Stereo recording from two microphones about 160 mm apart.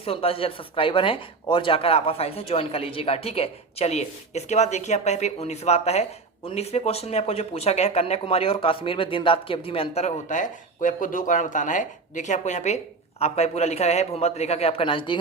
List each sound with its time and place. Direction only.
0.0 s speech: 35° left (ahead or behind)